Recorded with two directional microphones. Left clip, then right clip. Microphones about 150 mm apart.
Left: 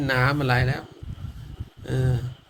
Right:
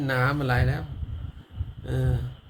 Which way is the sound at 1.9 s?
15° right (ahead or behind).